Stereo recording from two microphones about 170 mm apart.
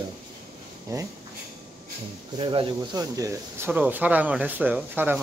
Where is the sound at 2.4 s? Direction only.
30° right (ahead or behind).